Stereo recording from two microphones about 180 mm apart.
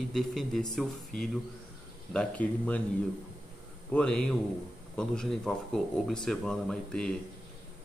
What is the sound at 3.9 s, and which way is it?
Speech, 5° left (ahead or behind).